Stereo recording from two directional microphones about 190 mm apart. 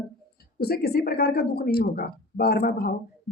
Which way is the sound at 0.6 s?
55° left (ahead or behind).